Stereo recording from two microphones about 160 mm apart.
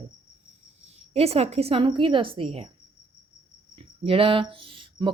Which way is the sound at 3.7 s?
35° right (ahead or behind).